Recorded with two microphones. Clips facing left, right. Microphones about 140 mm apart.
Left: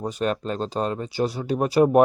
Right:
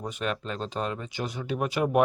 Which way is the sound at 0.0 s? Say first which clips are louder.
Left 6 dB; 35° left (ahead or behind).